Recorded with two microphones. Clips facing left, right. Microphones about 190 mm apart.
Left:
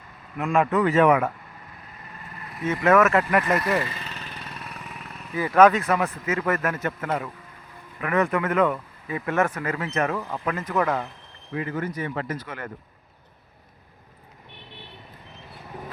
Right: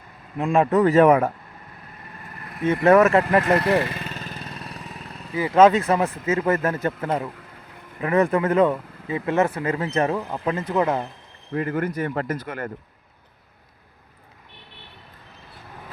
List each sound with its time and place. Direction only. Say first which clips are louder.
0.3 s speech: right 3 dB; 30° right (ahead or behind)
2.8 s speech: right 3 dB; 35° right (ahead or behind)
3.8 s vehicle: right 5 dB; 50° right (ahead or behind); by 5.1 s 35° right (ahead or behind)
5.3 s speech: right 2 dB; 20° right (ahead or behind)
11.5 s speech: right 4 dB; 55° right (ahead or behind)